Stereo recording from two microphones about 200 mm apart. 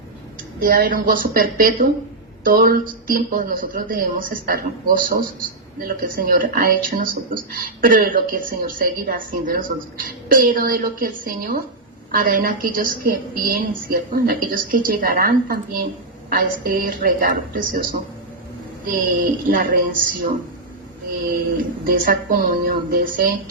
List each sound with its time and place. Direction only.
0.6 s a woman's voice: 45° right (ahead or behind)
21.8 s a woman's voice: 45° right (ahead or behind)